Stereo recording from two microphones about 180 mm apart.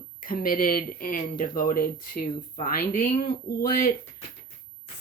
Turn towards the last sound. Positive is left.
turn(degrees=50)  # may be behind; listen again after turning